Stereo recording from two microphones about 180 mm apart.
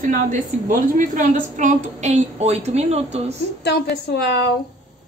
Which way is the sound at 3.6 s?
70° left (ahead or behind).